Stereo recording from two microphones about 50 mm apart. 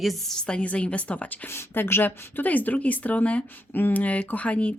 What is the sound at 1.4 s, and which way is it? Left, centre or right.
Speech, left.